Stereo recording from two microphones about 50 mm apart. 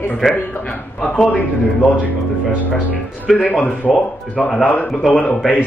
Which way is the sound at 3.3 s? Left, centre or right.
Left.